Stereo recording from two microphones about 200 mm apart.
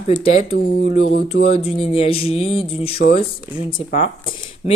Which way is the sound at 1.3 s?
30° left (ahead or behind).